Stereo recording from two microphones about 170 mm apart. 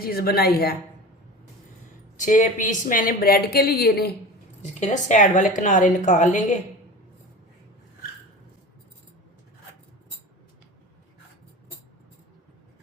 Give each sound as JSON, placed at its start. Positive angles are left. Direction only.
{"t": 0.0, "sound": "a woman's voice", "side_deg": 65}
{"t": 2.1, "sound": "a woman's voice", "side_deg": 50}
{"t": 4.6, "sound": "a woman's voice", "side_deg": 45}